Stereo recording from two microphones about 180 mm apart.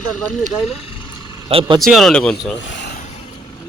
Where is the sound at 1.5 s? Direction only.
30° right (ahead or behind).